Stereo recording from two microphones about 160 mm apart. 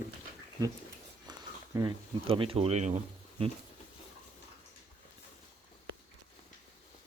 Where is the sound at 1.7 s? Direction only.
30° right (ahead or behind).